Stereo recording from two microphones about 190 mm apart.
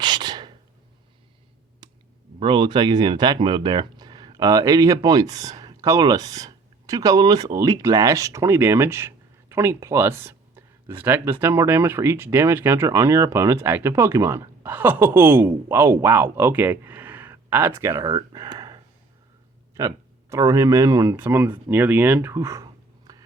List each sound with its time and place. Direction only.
0.0 s a sound: 25° right (ahead or behind)
1.8 s clicking: 25° right (ahead or behind)
2.4 s speech: 25° right (ahead or behind)
20.3 s speech: 15° right (ahead or behind)